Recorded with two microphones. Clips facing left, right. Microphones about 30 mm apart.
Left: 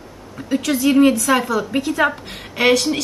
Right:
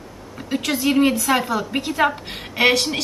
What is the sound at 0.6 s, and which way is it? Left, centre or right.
A woman's voice, centre.